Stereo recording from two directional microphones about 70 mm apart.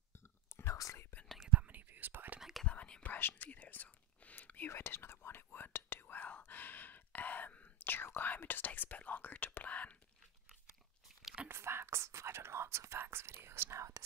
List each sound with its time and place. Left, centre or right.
1.5 s whispering: right
2.6 s whispering: centre
4.6 s whispering: left
11.4 s whispering: right